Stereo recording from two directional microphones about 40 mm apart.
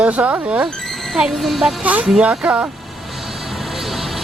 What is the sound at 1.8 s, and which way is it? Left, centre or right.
Speech, right.